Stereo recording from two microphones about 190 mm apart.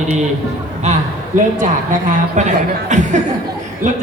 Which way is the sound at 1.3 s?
40° right (ahead or behind).